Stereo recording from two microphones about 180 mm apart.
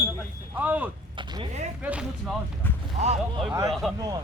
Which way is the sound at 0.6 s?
10° right (ahead or behind).